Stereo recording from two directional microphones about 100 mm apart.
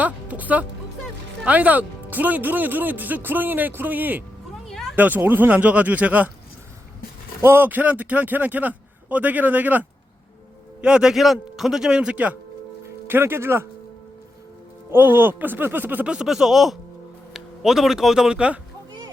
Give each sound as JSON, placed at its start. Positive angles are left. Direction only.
{"t": 0.0, "sound": "speech", "side_deg": -15}
{"t": 4.6, "sound": "a sound", "side_deg": 0}
{"t": 4.9, "sound": "speech", "side_deg": -15}
{"t": 7.4, "sound": "speech", "side_deg": -20}
{"t": 14.8, "sound": "speech", "side_deg": -20}